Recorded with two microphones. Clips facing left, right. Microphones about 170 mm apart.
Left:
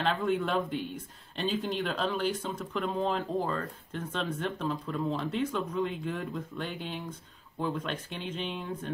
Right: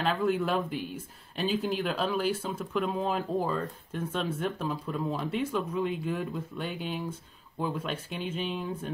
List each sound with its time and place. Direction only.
0.0 s speech: 5° right (ahead or behind)